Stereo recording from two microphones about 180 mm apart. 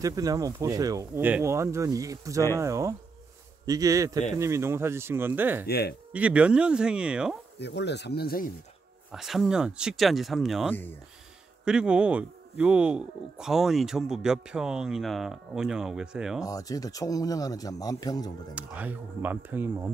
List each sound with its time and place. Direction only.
0.0 s speech: 20° right (ahead or behind)
5.7 s speech: 60° left (ahead or behind)
6.1 s speech: 5° right (ahead or behind)
7.5 s speech: 70° left (ahead or behind)
9.1 s speech: centre (ahead or behind)
16.4 s speech: 20° left (ahead or behind)
18.5 s speech: 10° right (ahead or behind)